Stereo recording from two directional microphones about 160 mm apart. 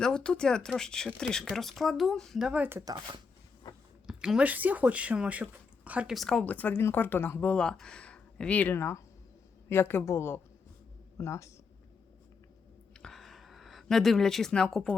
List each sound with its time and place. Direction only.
0.0 s speech: 5° left (ahead or behind); by 3.2 s 25° right (ahead or behind)
4.0 s speech: 5° right (ahead or behind); by 11.5 s 20° left (ahead or behind)
12.9 s a sound: 5° left (ahead or behind)